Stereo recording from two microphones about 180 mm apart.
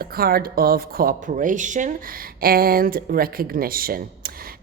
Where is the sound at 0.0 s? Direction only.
55° right (ahead or behind).